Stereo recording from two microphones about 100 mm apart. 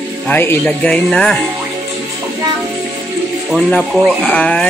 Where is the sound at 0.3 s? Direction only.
20° left (ahead or behind).